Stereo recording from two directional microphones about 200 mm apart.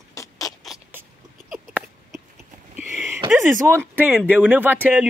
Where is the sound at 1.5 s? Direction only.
5° right (ahead or behind).